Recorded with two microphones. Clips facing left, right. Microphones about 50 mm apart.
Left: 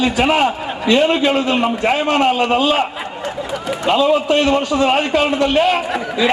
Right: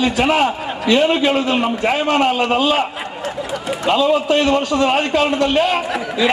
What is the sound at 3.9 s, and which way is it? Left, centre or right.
A man's voice, centre.